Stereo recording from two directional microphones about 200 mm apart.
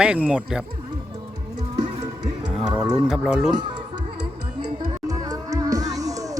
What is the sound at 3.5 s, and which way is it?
Speech, 20° right (ahead or behind).